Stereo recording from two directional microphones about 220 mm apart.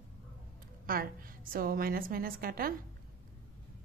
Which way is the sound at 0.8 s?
40° right (ahead or behind).